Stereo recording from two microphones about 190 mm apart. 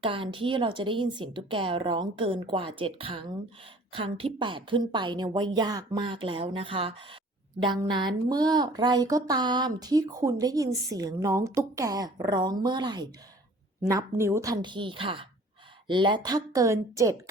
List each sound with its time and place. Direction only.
0.0 s speech: 25° right (ahead or behind)